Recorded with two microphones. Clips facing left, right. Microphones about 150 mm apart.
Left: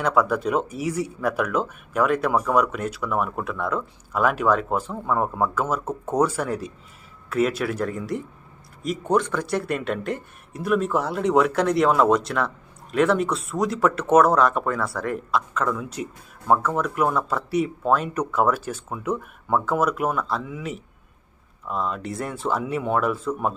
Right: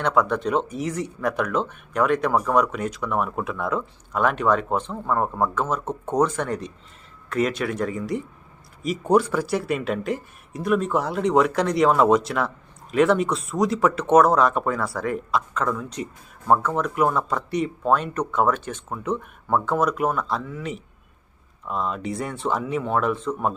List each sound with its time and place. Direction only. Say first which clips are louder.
0.0 s speech: even; 5° left (ahead or behind)